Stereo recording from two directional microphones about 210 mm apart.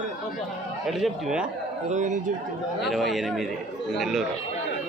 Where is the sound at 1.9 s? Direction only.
35° right (ahead or behind).